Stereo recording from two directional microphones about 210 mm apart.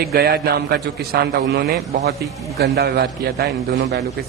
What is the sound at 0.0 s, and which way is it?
A man's voice, 50° right (ahead or behind).